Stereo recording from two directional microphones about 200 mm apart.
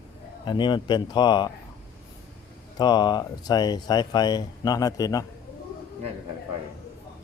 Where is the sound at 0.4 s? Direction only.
20° left (ahead or behind).